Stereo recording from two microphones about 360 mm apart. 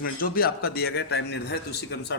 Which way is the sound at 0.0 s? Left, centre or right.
Left.